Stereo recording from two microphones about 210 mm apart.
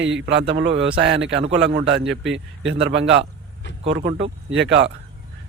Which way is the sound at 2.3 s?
60° right (ahead or behind).